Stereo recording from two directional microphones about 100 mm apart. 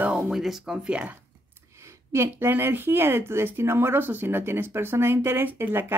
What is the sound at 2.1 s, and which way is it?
Speech, 25° right (ahead or behind).